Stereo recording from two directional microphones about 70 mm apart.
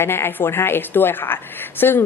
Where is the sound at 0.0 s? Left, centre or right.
Left.